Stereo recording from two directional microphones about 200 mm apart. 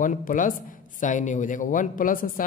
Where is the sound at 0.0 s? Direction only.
40° left (ahead or behind).